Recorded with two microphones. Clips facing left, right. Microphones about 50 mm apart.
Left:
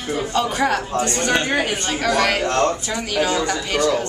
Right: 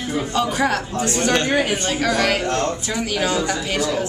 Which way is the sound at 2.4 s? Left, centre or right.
Left.